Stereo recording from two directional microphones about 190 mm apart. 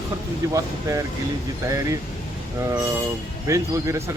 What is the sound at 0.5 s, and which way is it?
Speech, 15° right (ahead or behind).